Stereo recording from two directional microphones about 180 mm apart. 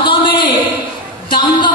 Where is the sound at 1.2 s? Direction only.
25° left (ahead or behind).